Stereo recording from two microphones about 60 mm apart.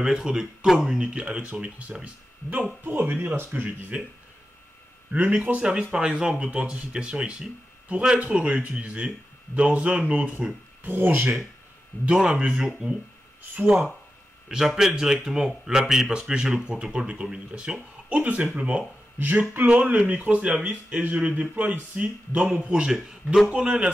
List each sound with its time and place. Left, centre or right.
0.0 s speech: centre
2.9 s speech: right
5.1 s speech: right
10.8 s speech: right
12.1 s speech: centre
19.1 s speech: right